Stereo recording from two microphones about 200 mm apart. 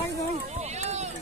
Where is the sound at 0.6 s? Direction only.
35° right (ahead or behind).